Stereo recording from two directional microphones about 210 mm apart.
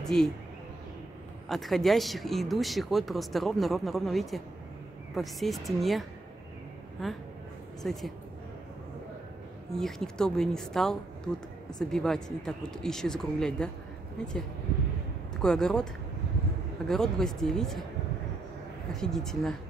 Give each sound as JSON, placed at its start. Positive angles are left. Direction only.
{"t": 0.0, "sound": "speech", "side_deg": 0}
{"t": 1.5, "sound": "speech", "side_deg": 0}
{"t": 9.7, "sound": "speech", "side_deg": 0}
{"t": 15.4, "sound": "speech", "side_deg": 5}
{"t": 18.9, "sound": "speech", "side_deg": 0}